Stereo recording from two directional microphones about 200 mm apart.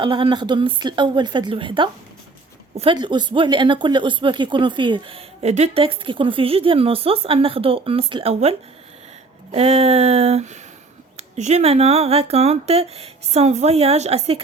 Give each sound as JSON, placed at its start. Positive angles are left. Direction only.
{"t": 0.0, "sound": "speech", "side_deg": -25}